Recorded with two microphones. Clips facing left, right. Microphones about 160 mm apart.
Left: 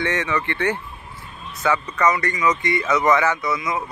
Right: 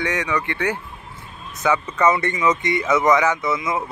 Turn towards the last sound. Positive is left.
turn(degrees=-25)  # may be behind; listen again after turning